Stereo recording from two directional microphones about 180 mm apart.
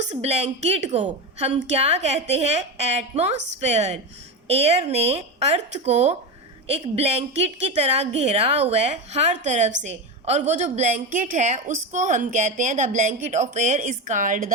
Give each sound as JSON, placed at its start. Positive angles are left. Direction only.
{"t": 0.0, "sound": "a woman's voice", "side_deg": -40}